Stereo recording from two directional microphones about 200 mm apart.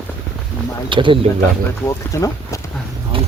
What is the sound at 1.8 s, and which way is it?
Speech, 15° left (ahead or behind).